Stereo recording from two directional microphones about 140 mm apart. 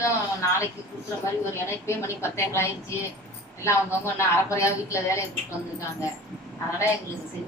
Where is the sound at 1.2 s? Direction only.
20° left (ahead or behind).